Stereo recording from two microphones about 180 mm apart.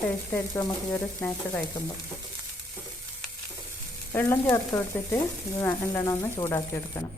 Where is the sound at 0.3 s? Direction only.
15° left (ahead or behind).